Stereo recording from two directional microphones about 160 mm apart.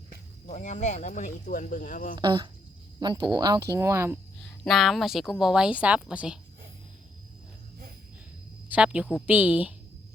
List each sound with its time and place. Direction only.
0.4 s speech: 50° left (ahead or behind)
2.1 s speech: 30° right (ahead or behind)
4.6 s speech: centre (ahead or behind)
8.7 s a woman's voice: 5° right (ahead or behind)